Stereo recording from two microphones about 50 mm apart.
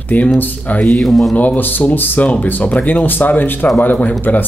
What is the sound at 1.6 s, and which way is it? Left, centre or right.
Speech, left.